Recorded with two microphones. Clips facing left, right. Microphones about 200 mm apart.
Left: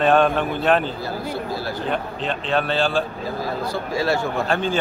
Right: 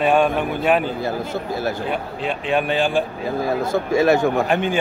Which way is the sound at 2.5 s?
15° right (ahead or behind).